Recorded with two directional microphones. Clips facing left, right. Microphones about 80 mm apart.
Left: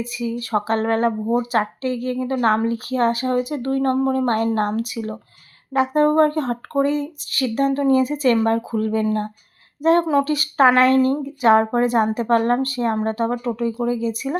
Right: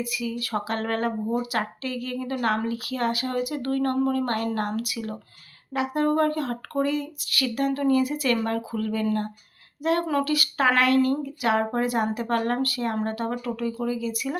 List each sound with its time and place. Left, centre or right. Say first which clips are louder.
0.0 s speech: left 5 dB; left
5.7 s speech: left 7 dB; left